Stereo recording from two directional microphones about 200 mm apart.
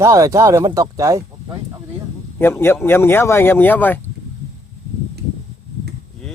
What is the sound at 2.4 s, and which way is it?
Speech, 10° left (ahead or behind).